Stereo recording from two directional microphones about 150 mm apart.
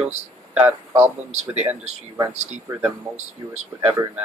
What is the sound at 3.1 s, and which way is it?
Speech, 50° right (ahead or behind).